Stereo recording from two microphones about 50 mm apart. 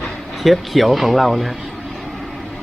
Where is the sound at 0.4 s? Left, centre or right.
Centre.